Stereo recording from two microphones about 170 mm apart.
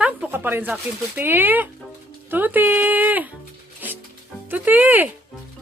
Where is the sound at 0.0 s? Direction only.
10° right (ahead or behind).